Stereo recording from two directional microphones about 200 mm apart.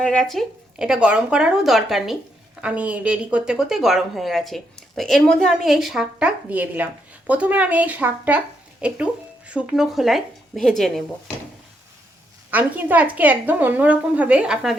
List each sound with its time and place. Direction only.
0.0 s a woman's voice: 5° left (ahead or behind)
12.5 s a woman's voice: 10° right (ahead or behind)